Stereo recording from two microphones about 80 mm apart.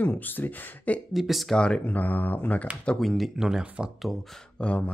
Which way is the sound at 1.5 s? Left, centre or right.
Centre.